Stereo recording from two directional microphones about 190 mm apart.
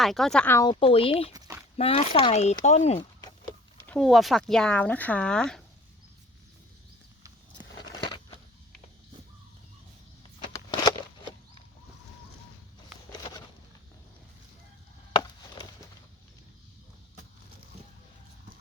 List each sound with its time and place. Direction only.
0.0 s speech: centre (ahead or behind)
0.6 s speech: 25° left (ahead or behind)
1.3 s a sound: 15° right (ahead or behind)
1.7 s speech: 30° left (ahead or behind)
3.8 s speech: 5° left (ahead or behind)
10.5 s a sound: 20° left (ahead or behind)